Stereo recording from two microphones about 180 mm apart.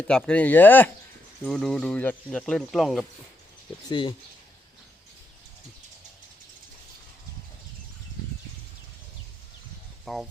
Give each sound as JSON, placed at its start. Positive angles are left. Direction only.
{"t": 0.1, "sound": "speech", "side_deg": 5}
{"t": 3.8, "sound": "speech", "side_deg": 25}
{"t": 10.1, "sound": "speech", "side_deg": 0}